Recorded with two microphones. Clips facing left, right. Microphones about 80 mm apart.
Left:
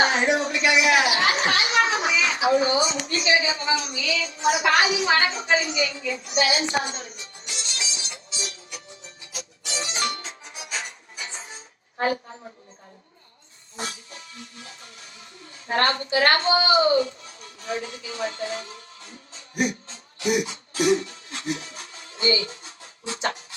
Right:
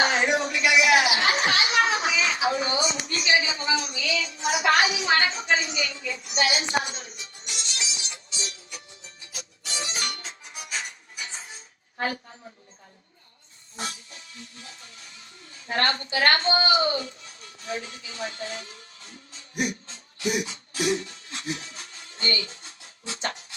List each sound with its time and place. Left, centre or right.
0.0 s a sound: left
3.1 s a woman's voice: left
6.4 s music: left
11.9 s a woman's voice: left
13.7 s speech: left
16.6 s music: left
22.4 s a sound: left